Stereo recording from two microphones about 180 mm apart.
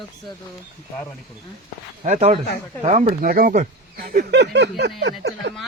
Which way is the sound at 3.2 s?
55° right (ahead or behind).